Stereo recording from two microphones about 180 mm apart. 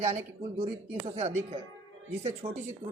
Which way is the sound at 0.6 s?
35° right (ahead or behind).